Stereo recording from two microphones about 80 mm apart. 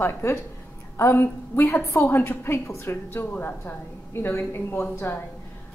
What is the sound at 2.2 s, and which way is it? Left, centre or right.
A woman's voice, left.